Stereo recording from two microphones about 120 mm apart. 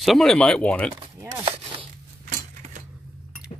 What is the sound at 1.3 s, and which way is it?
Speech, 55° right (ahead or behind).